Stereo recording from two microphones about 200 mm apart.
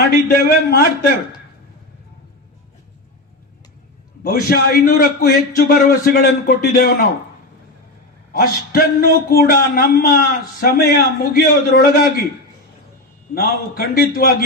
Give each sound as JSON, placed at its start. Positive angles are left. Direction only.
{"t": 0.0, "sound": "speech", "side_deg": 55}
{"t": 4.2, "sound": "speech", "side_deg": 50}
{"t": 8.3, "sound": "speech", "side_deg": 50}
{"t": 13.3, "sound": "speech", "side_deg": 50}